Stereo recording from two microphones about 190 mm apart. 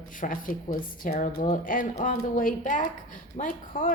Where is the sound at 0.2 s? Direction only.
45° left (ahead or behind).